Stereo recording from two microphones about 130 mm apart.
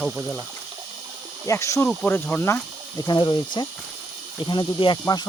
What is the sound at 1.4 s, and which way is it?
Speech, 20° left (ahead or behind).